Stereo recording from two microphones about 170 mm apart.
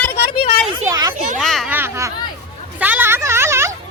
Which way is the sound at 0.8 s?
20° right (ahead or behind).